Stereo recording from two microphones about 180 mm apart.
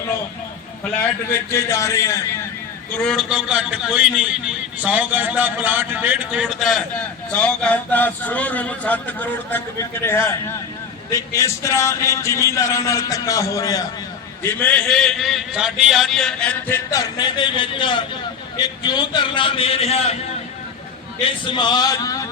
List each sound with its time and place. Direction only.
1.3 s a man's voice: 15° left (ahead or behind)
2.9 s a man's voice: centre (ahead or behind); by 20.1 s 35° left (ahead or behind)
21.2 s a man's voice: 25° left (ahead or behind)